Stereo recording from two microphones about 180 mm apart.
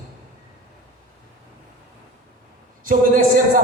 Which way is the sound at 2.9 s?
50° right (ahead or behind).